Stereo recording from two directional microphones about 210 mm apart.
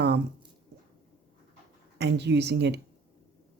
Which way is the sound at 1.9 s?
55° right (ahead or behind).